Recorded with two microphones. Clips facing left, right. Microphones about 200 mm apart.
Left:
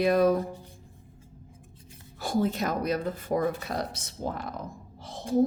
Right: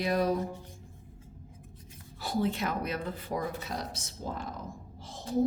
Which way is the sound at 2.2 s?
45° left (ahead or behind).